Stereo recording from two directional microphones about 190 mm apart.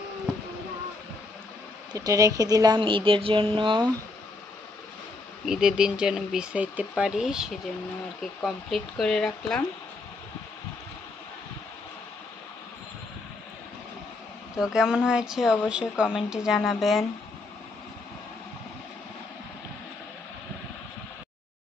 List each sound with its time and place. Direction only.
2.0 s speech: 20° right (ahead or behind)
5.4 s speech: 5° right (ahead or behind)
14.5 s speech: 5° right (ahead or behind)